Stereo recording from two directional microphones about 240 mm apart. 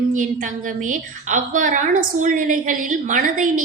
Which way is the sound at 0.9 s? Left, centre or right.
Right.